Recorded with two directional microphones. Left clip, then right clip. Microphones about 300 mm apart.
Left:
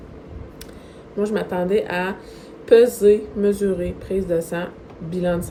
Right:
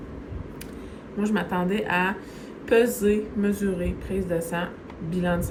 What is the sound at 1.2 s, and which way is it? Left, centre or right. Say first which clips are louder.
A woman's voice: left 4 dB; centre.